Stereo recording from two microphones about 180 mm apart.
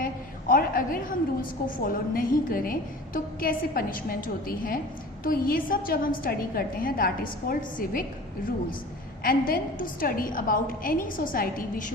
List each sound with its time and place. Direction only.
0.0 s a sound: 50° left (ahead or behind)
1.8 s a woman's voice: 50° left (ahead or behind)
9.2 s a woman's voice: 55° left (ahead or behind)